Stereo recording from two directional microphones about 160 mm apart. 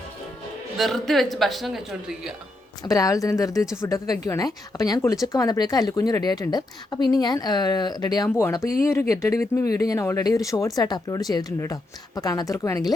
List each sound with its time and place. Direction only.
0.8 s a woman's voice: centre (ahead or behind)
2.8 s speech: 20° left (ahead or behind)